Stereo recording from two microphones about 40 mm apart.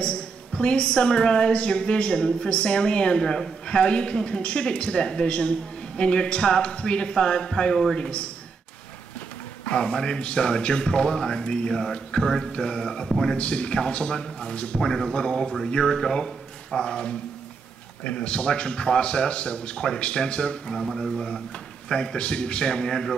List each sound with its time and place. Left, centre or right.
0.0 s a woman's voice: left
9.8 s a woman's voice: centre
13.4 s a woman's voice: left
14.8 s speech: centre
15.1 s a woman's voice: left
20.8 s a woman's voice: centre